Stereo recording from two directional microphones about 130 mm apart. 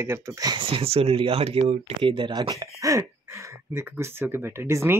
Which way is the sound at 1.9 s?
35° right (ahead or behind).